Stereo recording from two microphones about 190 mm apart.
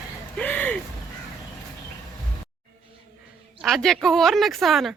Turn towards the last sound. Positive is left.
turn(degrees=0)  # may be behind; listen again after turning